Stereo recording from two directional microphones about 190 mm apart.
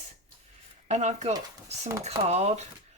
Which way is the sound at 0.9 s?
35° right (ahead or behind).